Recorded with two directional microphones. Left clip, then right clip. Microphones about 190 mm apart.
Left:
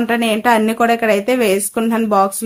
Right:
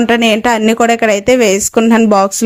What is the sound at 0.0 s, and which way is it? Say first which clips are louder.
Speech: right 5 dB; 35° right (ahead or behind).